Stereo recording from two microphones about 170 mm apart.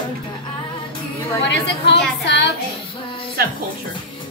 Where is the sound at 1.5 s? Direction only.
90° left.